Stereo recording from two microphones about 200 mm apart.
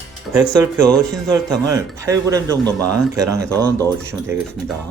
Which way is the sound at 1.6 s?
15° right (ahead or behind).